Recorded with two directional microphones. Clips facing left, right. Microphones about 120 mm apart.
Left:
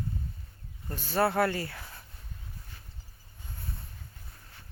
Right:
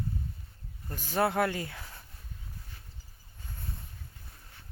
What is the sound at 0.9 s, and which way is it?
Speech, 15° right (ahead or behind).